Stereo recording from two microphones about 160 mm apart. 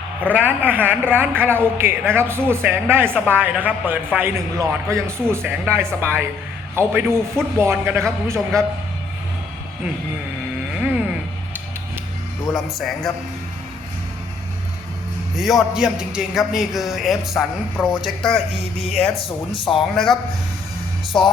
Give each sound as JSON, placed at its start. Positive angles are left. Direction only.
{"t": 0.3, "sound": "a man's voice", "side_deg": -10}
{"t": 10.8, "sound": "music", "side_deg": -5}
{"t": 12.5, "sound": "a man's voice", "side_deg": 0}
{"t": 15.4, "sound": "a man's voice", "side_deg": 0}
{"t": 19.5, "sound": "speech", "side_deg": 30}
{"t": 21.1, "sound": "a man's voice", "side_deg": 5}